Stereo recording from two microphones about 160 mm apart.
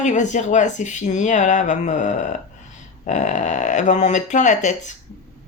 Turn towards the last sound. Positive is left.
turn(degrees=50)  # may be behind; listen again after turning